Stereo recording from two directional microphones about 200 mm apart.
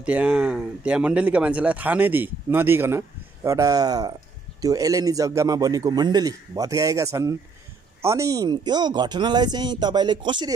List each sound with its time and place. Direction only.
0.0 s speech: 5° right (ahead or behind); by 10.5 s 20° right (ahead or behind)